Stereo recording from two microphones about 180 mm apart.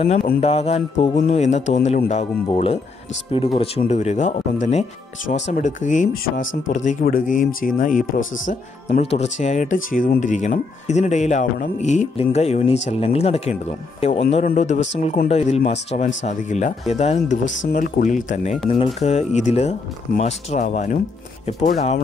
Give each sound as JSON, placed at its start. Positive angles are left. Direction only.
{"t": 0.0, "sound": "speech", "side_deg": 35}
{"t": 6.7, "sound": "speech", "side_deg": 45}